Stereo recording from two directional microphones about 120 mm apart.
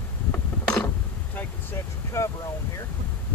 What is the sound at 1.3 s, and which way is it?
Speech, 20° left (ahead or behind).